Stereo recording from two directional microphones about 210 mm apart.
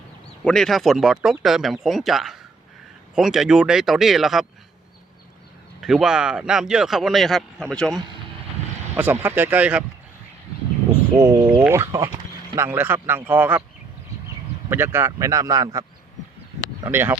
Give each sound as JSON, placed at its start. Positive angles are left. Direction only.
{"t": 0.4, "sound": "a man's voice", "side_deg": 0}
{"t": 5.8, "sound": "a man's voice", "side_deg": 0}
{"t": 9.0, "sound": "speech", "side_deg": -10}
{"t": 11.2, "sound": "speech", "side_deg": -10}
{"t": 14.7, "sound": "speech", "side_deg": -10}
{"t": 16.8, "sound": "speech", "side_deg": -10}